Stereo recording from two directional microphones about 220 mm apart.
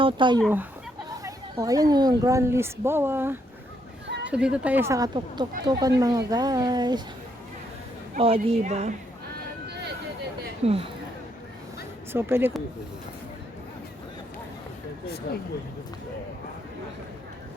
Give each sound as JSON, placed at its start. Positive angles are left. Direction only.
{"t": 0.0, "sound": "speech", "side_deg": -20}
{"t": 0.4, "sound": "a woman's voice", "side_deg": -5}
{"t": 4.0, "sound": "a sound", "side_deg": -55}
{"t": 4.3, "sound": "a woman's voice", "side_deg": -5}
{"t": 8.2, "sound": "a woman's voice", "side_deg": -30}
{"t": 10.6, "sound": "speech", "side_deg": -25}
{"t": 12.1, "sound": "a woman's voice", "side_deg": -10}
{"t": 15.0, "sound": "speech", "side_deg": 45}